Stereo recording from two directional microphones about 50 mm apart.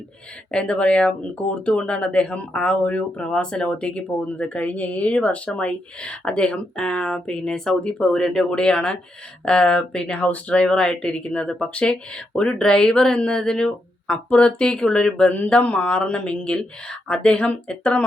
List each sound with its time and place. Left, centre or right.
0.5 s speech: centre